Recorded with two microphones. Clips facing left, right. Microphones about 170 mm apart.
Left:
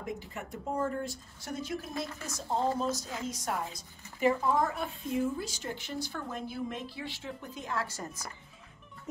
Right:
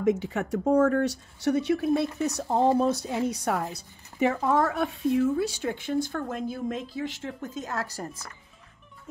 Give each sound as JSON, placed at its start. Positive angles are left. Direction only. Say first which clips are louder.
{"t": 0.0, "sound": "a woman's voice", "louder": "right 14 dB", "side_deg": -90}